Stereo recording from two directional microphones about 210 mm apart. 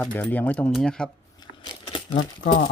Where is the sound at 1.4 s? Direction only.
20° left (ahead or behind).